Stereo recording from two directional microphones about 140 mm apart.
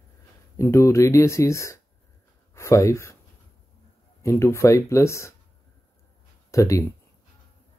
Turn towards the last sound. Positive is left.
turn(degrees=20)  # may be behind; listen again after turning